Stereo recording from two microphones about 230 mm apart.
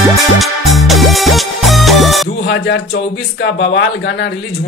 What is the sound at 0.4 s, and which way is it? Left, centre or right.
Music, centre.